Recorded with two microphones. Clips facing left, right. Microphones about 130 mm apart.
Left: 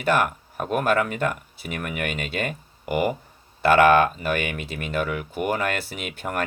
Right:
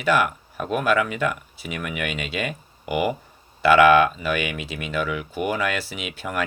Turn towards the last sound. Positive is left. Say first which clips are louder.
# even
turn(degrees=55)  # may be behind; listen again after turning